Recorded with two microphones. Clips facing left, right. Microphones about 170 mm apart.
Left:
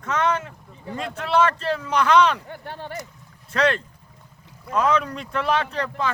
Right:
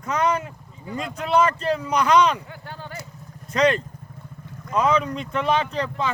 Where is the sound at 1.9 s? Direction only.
Centre (ahead or behind).